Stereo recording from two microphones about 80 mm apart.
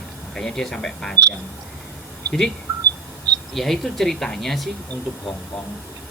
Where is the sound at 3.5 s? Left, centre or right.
Centre.